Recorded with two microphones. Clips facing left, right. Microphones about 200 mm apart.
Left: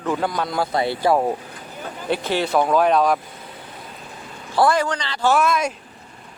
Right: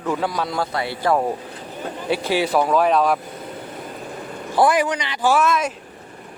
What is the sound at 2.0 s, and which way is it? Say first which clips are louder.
Speech: right 1 dB; 5° right (ahead or behind).